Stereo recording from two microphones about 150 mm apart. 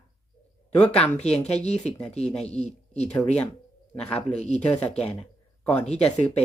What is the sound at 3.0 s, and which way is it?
Speech, 10° left (ahead or behind).